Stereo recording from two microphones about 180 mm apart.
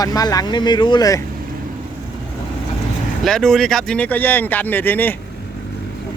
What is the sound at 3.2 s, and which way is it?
Speech, centre (ahead or behind).